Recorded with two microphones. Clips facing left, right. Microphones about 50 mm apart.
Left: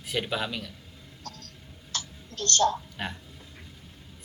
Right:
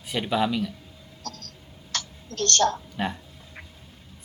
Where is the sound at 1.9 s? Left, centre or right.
Right.